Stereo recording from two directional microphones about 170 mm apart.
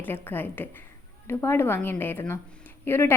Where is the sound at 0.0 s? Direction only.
10° left (ahead or behind).